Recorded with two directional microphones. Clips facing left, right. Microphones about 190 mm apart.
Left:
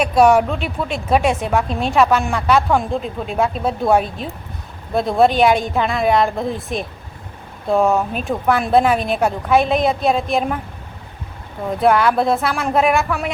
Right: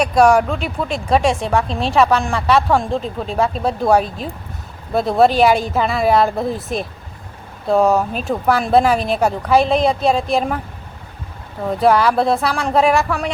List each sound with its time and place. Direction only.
0.0 s speech: centre (ahead or behind)
11.8 s speech: centre (ahead or behind)